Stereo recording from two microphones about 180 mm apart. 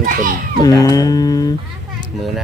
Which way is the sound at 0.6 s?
20° left (ahead or behind).